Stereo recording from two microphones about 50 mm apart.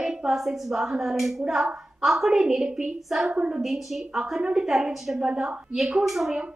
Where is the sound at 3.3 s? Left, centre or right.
Right.